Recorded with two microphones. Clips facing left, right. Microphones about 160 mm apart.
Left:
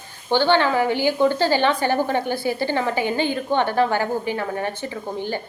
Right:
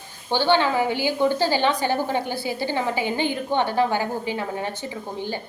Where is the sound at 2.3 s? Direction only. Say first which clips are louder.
Left 4 dB; 50° left (ahead or behind).